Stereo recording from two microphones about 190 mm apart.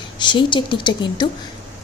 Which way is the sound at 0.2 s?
25° left (ahead or behind).